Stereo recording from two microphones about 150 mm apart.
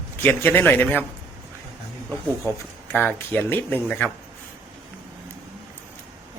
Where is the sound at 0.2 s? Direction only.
15° left (ahead or behind).